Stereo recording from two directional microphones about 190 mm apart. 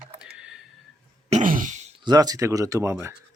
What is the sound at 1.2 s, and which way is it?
Throat clearing, 40° right (ahead or behind).